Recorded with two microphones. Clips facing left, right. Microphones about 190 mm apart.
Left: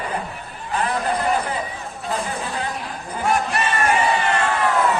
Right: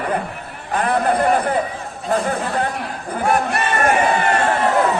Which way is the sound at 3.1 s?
55° right (ahead or behind).